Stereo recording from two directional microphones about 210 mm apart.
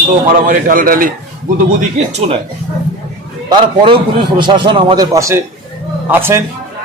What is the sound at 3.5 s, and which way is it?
A man's voice, 25° right (ahead or behind).